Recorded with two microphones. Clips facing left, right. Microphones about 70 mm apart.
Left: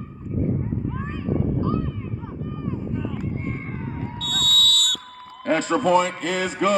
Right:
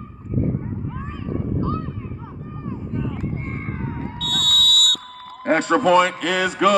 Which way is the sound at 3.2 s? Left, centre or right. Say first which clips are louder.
Right 1 dB; right.